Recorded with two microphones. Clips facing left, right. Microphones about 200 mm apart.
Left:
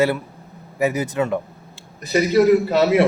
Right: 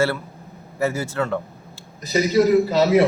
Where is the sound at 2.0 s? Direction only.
60° left (ahead or behind).